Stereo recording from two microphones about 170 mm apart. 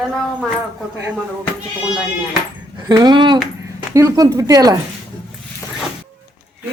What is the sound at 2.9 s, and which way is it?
Speech, 25° right (ahead or behind).